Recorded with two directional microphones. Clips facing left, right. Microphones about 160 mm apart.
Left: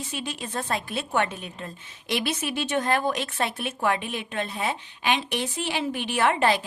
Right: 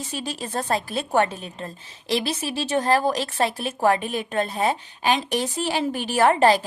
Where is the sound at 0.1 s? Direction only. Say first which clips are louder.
Right 5 dB; 40° right (ahead or behind).